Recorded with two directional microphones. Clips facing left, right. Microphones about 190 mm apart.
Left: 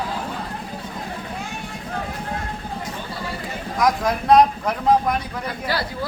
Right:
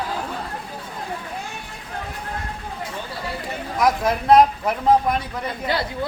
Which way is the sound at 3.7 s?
Centre (ahead or behind).